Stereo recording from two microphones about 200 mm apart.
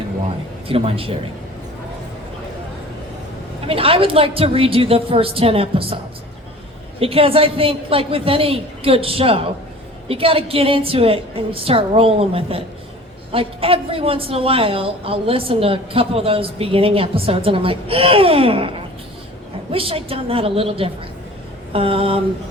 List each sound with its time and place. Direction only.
0.7 s a woman's voice: 30° right (ahead or behind)
3.7 s a woman's voice: 30° right (ahead or behind)
7.0 s a woman's voice: 30° right (ahead or behind)
19.7 s a woman's voice: 30° right (ahead or behind)